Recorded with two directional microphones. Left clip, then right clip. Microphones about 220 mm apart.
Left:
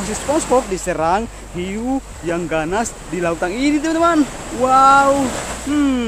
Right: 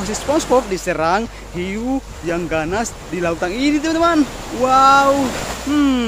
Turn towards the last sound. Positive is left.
turn(degrees=-5)  # may be behind; listen again after turning